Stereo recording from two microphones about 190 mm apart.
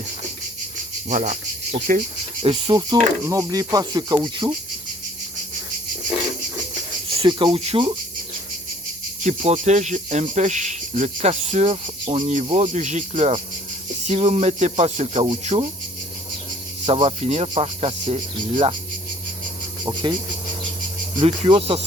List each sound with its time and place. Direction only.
1.1 s cricket: 45° right (ahead or behind)
2.4 s speech: 30° right (ahead or behind)
7.2 s speech: 25° right (ahead or behind)
9.2 s speech: 40° right (ahead or behind)
16.8 s speech: 30° right (ahead or behind)
19.8 s speech: 25° right (ahead or behind)
21.2 s speech: 30° right (ahead or behind)